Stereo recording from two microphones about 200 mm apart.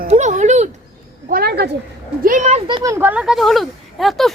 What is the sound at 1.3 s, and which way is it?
Speech, 50° right (ahead or behind).